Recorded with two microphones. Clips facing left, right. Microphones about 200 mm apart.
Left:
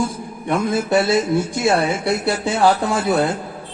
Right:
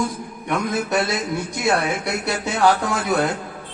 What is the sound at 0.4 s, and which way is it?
Speech, 30° left (ahead or behind).